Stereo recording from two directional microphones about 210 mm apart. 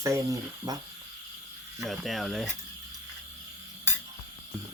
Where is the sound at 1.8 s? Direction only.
Centre (ahead or behind).